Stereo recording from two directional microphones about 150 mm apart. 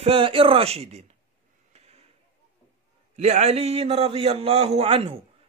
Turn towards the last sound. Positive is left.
turn(degrees=-40)  # may be behind; listen again after turning